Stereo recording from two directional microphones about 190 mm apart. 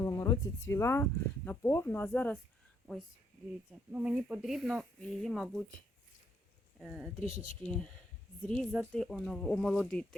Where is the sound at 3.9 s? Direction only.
5° right (ahead or behind).